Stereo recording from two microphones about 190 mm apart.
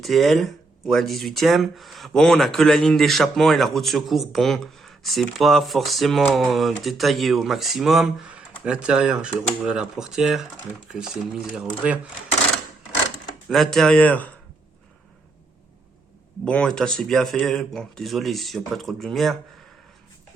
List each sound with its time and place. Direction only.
0.0 s speech: centre (ahead or behind)
13.5 s speech: centre (ahead or behind)
16.5 s speech: 5° left (ahead or behind)